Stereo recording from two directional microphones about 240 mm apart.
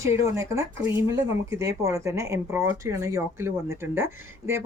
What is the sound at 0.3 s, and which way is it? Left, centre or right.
Speech, centre.